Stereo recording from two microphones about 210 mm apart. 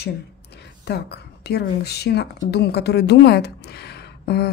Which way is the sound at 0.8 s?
50° left (ahead or behind).